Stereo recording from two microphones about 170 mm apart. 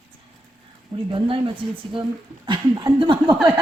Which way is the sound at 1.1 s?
30° right (ahead or behind).